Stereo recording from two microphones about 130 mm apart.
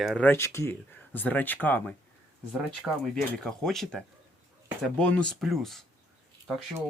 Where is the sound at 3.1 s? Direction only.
5° left (ahead or behind).